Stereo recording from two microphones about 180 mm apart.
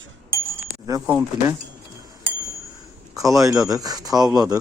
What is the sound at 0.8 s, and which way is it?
Speech, 15° right (ahead or behind).